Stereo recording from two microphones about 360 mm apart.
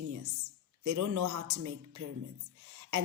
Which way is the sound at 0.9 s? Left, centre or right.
Right.